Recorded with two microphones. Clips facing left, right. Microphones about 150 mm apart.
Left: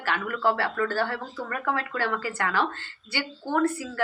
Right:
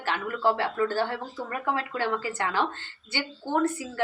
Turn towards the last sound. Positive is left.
turn(degrees=-20)  # may be behind; listen again after turning